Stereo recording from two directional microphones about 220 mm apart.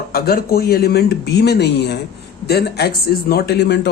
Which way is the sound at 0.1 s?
45° left (ahead or behind).